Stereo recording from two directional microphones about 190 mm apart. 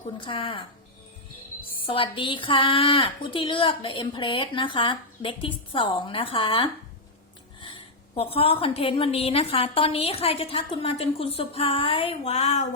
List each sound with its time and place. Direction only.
0.2 s a woman's voice: 30° left (ahead or behind)
1.9 s a woman's voice: 25° left (ahead or behind)